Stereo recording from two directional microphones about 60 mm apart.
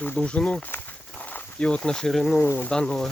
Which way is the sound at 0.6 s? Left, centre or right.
Left.